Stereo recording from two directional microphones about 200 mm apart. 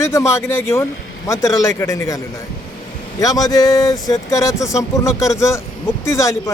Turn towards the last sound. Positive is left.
turn(degrees=15)  # may be behind; listen again after turning